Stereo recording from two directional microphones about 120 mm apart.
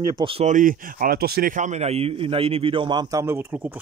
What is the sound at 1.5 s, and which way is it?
A man's voice, 75° right (ahead or behind).